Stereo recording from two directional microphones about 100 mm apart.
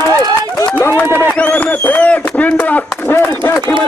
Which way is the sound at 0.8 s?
20° left (ahead or behind).